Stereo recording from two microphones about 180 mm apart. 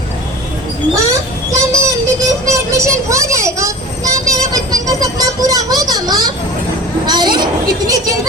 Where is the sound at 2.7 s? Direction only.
15° right (ahead or behind).